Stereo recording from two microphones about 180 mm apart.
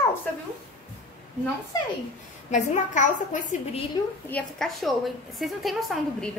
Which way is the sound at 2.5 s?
40° left (ahead or behind).